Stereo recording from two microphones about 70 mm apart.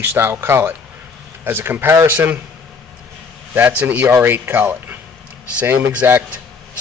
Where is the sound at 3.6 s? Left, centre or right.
Right.